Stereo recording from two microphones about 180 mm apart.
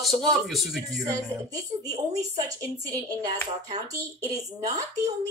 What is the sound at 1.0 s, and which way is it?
Speech, 20° right (ahead or behind).